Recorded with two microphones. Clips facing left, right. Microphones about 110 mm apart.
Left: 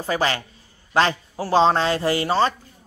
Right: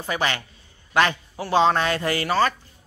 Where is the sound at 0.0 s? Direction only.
35° left (ahead or behind).